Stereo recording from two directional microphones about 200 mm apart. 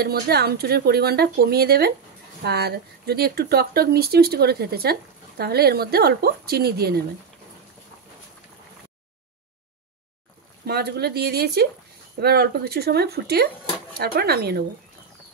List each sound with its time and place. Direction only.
0.0 s speech: 50° right (ahead or behind)
10.7 s speech: 50° right (ahead or behind)